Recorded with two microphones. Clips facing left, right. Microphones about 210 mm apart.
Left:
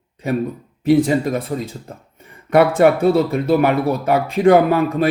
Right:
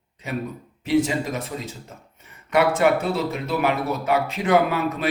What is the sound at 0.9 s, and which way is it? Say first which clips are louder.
A man's voice: left 6 dB; 55° left (ahead or behind).